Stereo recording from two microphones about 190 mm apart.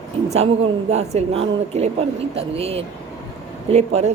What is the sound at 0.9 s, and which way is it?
A woman's voice, 35° right (ahead or behind).